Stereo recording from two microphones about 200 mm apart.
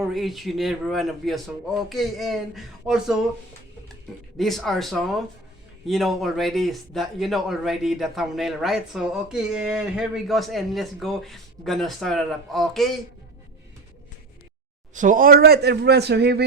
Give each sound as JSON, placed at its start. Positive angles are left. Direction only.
{"t": 0.0, "sound": "speech", "side_deg": 0}
{"t": 4.4, "sound": "speech", "side_deg": 0}
{"t": 14.9, "sound": "a man's voice", "side_deg": -40}